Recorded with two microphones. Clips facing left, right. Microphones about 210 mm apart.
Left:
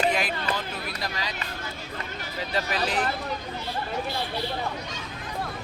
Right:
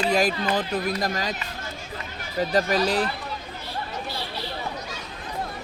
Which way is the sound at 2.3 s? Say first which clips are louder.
Right 7 dB; 45° right (ahead or behind).